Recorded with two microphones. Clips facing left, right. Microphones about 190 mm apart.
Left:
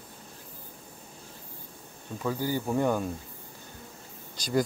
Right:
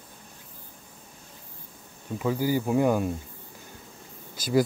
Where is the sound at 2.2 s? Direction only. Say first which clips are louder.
Right 4 dB; 10° right (ahead or behind).